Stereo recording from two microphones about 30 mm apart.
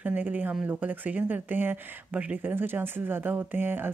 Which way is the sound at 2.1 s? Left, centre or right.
Right.